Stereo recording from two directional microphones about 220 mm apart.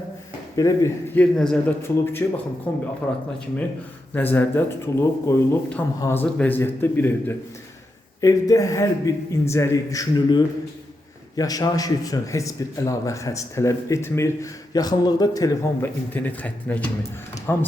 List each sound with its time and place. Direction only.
0.5 s a man's voice: 15° left (ahead or behind)